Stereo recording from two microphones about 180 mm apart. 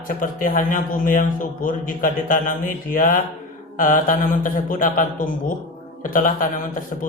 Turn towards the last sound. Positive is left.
turn(degrees=50)  # may be behind; listen again after turning